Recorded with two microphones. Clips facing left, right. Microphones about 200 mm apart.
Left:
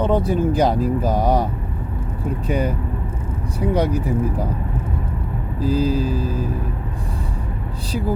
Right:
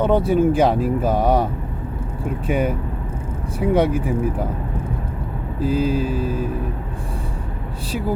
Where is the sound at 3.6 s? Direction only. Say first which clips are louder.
Right 2 dB; 10° right (ahead or behind).